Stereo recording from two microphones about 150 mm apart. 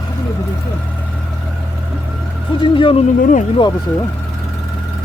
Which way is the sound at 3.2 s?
60° left (ahead or behind).